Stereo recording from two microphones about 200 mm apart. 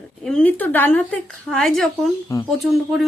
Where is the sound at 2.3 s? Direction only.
15° left (ahead or behind).